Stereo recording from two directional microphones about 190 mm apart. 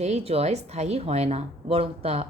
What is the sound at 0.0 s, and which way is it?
Speech, 35° right (ahead or behind).